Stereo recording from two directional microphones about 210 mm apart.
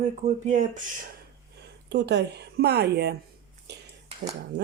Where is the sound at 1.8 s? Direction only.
55° right (ahead or behind).